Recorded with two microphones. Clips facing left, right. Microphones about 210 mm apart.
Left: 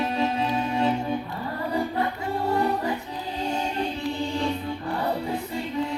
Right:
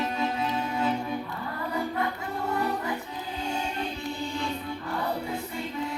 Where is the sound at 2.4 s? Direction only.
35° left (ahead or behind).